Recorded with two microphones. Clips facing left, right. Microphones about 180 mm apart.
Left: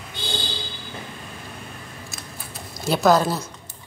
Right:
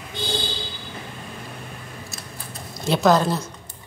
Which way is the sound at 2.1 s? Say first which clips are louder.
Right 1 dB; 5° left (ahead or behind).